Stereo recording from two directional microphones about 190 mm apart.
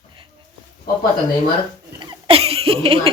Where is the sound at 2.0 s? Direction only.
25° right (ahead or behind).